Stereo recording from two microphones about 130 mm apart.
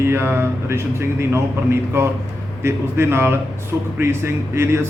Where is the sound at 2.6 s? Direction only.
20° right (ahead or behind).